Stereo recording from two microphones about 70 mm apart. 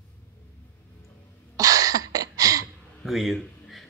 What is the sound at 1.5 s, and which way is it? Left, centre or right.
Cough, right.